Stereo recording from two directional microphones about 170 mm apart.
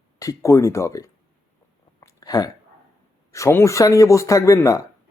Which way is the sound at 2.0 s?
20° left (ahead or behind).